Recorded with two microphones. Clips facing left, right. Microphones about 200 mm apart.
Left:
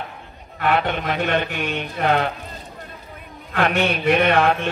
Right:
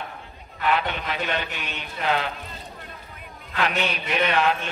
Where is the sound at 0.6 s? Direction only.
50° left (ahead or behind).